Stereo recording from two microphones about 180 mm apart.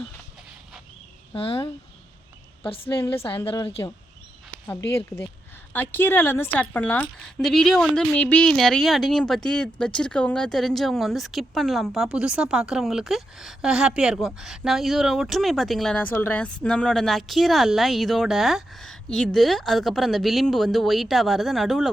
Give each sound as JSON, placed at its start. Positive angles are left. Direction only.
{"t": 1.3, "sound": "speech", "side_deg": 30}
{"t": 2.6, "sound": "a woman's voice", "side_deg": 30}
{"t": 4.9, "sound": "a woman's voice", "side_deg": 15}